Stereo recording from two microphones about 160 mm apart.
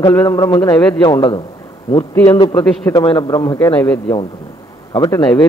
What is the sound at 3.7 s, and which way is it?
Speech, 10° left (ahead or behind).